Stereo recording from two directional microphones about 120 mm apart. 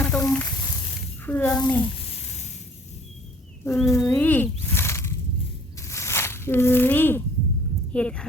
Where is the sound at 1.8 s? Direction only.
55° left (ahead or behind).